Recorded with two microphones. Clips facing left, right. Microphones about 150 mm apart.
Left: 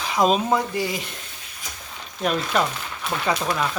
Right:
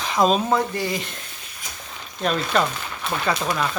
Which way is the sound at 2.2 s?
10° left (ahead or behind).